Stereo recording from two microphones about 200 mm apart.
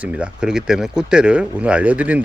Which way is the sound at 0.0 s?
5° right (ahead or behind).